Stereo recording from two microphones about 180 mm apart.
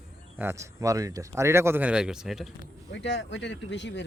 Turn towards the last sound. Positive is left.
turn(degrees=75)  # may be behind; listen again after turning